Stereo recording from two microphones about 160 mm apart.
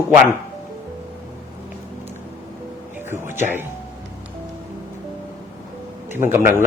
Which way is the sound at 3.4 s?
15° right (ahead or behind).